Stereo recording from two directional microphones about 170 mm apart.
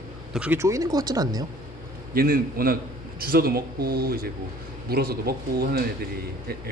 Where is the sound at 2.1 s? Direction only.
60° right (ahead or behind).